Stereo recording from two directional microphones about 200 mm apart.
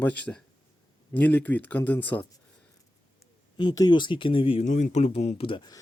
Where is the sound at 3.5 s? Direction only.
20° left (ahead or behind).